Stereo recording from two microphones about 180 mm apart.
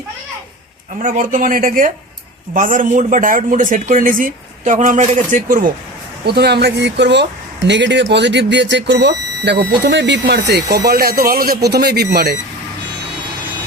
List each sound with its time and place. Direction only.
1.0 s speech: 50° right (ahead or behind)
6.2 s speech: 65° right (ahead or behind)
10.8 s speech: 55° right (ahead or behind)